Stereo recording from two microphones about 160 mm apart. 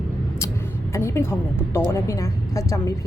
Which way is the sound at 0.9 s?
15° left (ahead or behind).